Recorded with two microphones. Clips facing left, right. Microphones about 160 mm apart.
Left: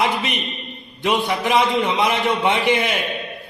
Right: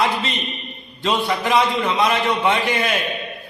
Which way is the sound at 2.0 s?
20° left (ahead or behind).